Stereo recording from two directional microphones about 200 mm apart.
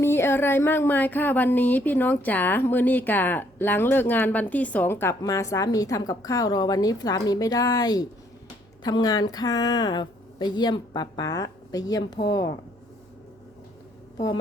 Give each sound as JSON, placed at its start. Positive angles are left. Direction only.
{"t": 0.0, "sound": "a woman's voice", "side_deg": 10}